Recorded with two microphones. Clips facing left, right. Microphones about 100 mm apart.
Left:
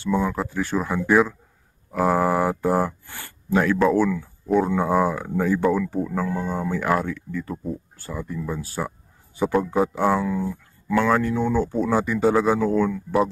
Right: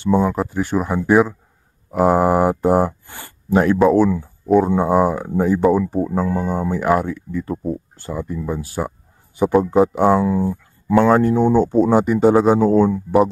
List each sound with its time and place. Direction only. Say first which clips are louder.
0.0 s speech: right 6 dB; 20° right (ahead or behind)
10.3 s speech: right 6 dB; 35° right (ahead or behind)